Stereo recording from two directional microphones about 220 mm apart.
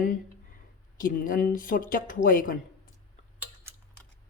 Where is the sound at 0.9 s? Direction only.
40° left (ahead or behind).